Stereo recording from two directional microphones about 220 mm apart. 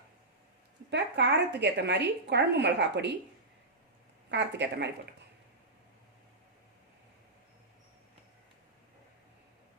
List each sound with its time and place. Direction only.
0.9 s a woman's voice: 50° right (ahead or behind)
4.3 s a woman's voice: 50° right (ahead or behind)